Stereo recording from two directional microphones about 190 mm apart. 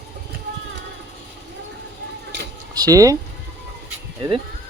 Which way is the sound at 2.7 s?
20° right (ahead or behind).